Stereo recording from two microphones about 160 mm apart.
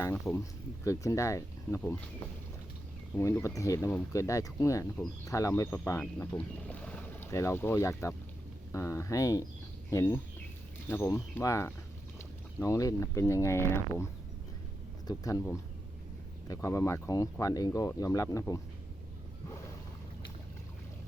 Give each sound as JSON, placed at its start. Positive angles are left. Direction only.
{"t": 0.0, "sound": "speech", "side_deg": 15}
{"t": 3.2, "sound": "speech", "side_deg": 15}